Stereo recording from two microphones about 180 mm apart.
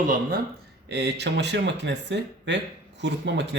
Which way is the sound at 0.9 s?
70° right (ahead or behind).